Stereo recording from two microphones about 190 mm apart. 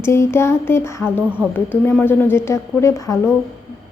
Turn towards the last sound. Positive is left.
turn(degrees=15)  # may be behind; listen again after turning